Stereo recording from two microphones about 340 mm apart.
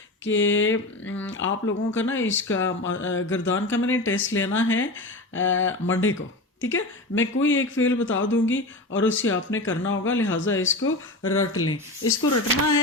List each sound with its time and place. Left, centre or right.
0.3 s speech: left